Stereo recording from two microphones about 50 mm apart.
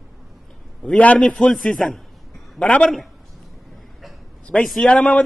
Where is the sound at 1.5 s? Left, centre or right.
Centre.